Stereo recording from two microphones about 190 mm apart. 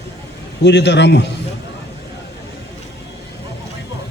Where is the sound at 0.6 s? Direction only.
65° left (ahead or behind).